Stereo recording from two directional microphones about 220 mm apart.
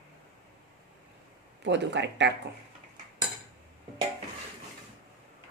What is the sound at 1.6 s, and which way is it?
Speech, 55° right (ahead or behind).